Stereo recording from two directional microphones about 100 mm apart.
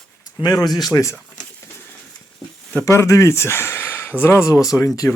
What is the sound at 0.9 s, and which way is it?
Speech, 30° left (ahead or behind).